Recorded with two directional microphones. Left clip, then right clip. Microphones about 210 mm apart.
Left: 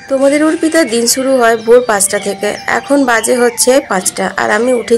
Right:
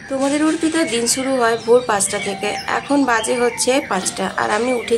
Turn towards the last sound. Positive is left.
turn(degrees=20)  # may be behind; listen again after turning